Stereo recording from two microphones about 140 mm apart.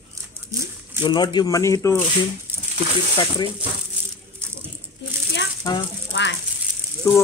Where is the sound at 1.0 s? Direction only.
30° left (ahead or behind).